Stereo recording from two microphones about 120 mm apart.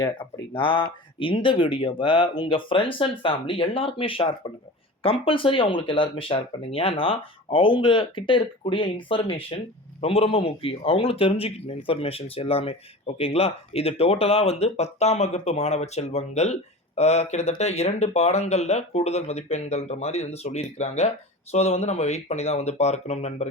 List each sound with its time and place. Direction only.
0.5 s speech: 45° left (ahead or behind); by 23.5 s 65° left (ahead or behind)